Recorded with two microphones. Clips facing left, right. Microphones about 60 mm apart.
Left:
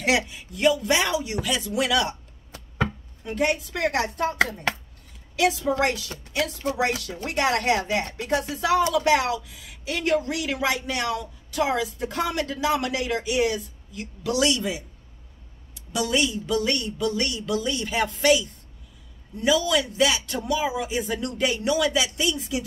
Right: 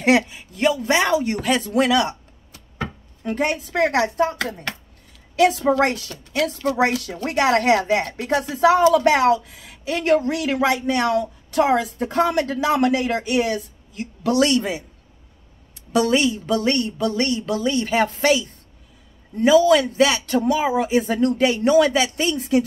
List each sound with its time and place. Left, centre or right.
0.0 s speech: right
3.3 s speech: right
5.4 s speech: right
7.2 s speech: right
15.9 s speech: right